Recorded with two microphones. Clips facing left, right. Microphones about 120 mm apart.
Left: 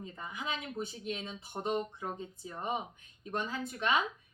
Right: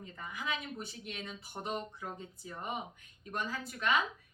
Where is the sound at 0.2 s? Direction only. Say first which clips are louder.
Even; 20° left (ahead or behind).